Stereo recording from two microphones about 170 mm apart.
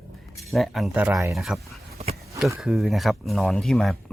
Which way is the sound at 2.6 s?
Centre (ahead or behind).